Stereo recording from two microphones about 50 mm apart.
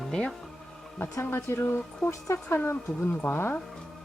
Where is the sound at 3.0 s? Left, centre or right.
Left.